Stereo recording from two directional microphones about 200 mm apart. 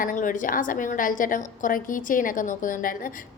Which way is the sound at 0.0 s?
40° left (ahead or behind).